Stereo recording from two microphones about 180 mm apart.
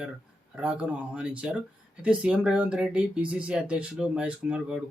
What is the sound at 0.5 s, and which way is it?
Speech, 5° right (ahead or behind).